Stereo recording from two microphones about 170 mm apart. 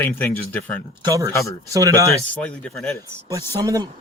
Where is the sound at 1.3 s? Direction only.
15° left (ahead or behind).